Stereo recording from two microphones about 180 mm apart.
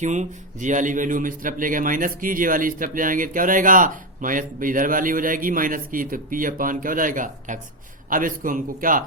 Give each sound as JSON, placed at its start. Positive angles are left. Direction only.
{"t": 0.0, "sound": "a man's voice", "side_deg": -40}